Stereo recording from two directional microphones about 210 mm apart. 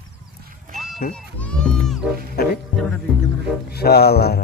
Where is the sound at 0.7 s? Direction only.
Centre (ahead or behind).